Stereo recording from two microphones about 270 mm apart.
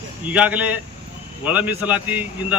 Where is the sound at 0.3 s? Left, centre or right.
Centre.